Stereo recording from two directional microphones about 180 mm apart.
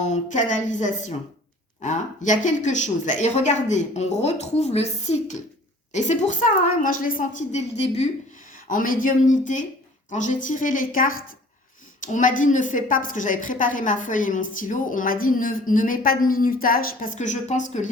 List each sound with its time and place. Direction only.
0.0 s a woman's voice: 40° left (ahead or behind)
8.7 s a woman's voice: 50° left (ahead or behind)